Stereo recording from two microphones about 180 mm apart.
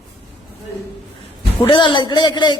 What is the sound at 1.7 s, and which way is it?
Speech, 25° left (ahead or behind).